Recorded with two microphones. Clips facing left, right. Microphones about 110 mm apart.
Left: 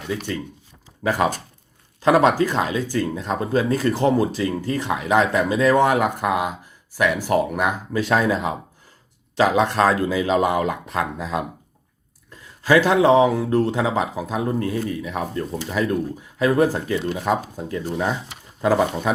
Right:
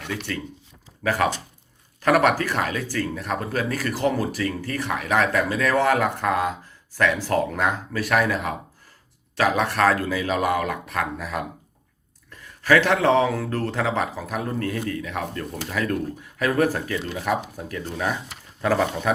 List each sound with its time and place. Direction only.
1.0 s speech: 20° left (ahead or behind)